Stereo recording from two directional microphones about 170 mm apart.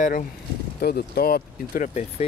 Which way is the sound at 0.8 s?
65° left (ahead or behind).